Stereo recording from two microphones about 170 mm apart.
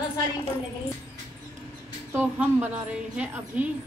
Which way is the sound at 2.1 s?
10° right (ahead or behind).